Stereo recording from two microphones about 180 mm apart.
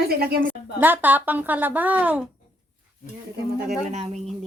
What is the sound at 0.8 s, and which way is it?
A woman's voice, 10° right (ahead or behind).